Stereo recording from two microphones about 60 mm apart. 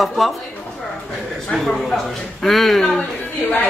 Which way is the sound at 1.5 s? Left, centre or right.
Centre.